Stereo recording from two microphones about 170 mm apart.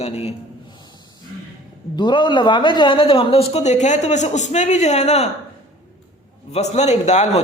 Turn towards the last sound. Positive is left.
turn(degrees=40)  # may be behind; listen again after turning